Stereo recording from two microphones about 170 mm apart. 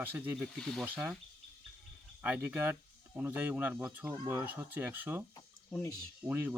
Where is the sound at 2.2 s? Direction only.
10° right (ahead or behind).